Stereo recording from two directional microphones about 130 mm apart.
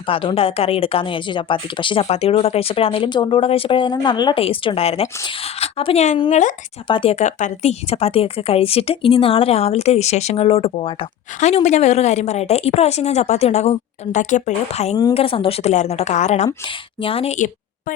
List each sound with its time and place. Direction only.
0.1 s a woman's voice: 45° left (ahead or behind)
4.4 s speech: 45° left (ahead or behind)
6.8 s speech: 45° left (ahead or behind)
11.3 s a woman's voice: 60° left (ahead or behind)
15.1 s speech: 45° left (ahead or behind)
15.7 s a woman's voice: 60° left (ahead or behind)
17.0 s speech: 45° left (ahead or behind)